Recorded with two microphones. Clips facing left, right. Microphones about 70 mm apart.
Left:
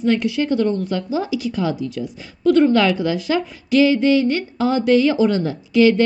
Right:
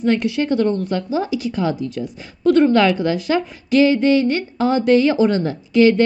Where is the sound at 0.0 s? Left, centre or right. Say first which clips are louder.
Even; right.